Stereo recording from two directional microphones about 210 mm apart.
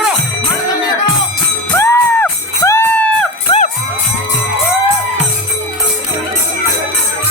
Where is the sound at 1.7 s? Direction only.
10° left (ahead or behind).